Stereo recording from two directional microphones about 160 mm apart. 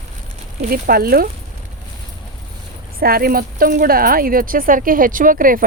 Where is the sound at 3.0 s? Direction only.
70° right (ahead or behind).